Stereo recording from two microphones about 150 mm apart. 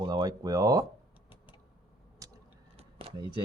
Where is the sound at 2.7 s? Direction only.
40° right (ahead or behind).